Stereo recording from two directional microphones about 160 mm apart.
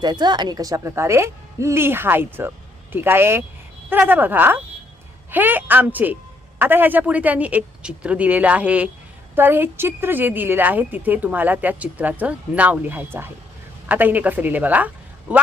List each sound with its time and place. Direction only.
0.0 s a woman's voice: 25° right (ahead or behind); by 15.4 s 10° right (ahead or behind)